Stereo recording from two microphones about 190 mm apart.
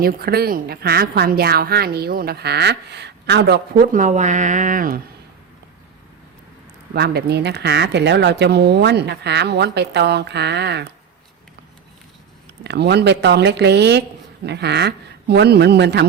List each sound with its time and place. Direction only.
0.0 s speech: 55° right (ahead or behind)
6.9 s speech: 60° right (ahead or behind)
12.6 s speech: 60° right (ahead or behind)